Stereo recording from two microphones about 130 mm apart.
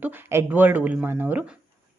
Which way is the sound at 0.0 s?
15° right (ahead or behind).